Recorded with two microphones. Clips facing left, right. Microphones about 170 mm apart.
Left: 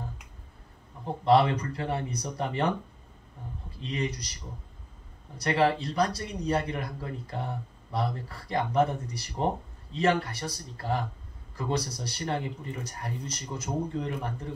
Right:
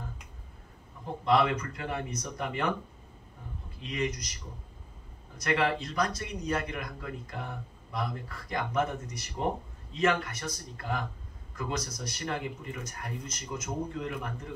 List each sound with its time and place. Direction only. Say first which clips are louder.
1.0 s a man's voice: left 4 dB; 30° left (ahead or behind)
3.8 s a man's voice: left 1 dB; 30° left (ahead or behind)
5.4 s a man's voice: left 3 dB; 30° left (ahead or behind)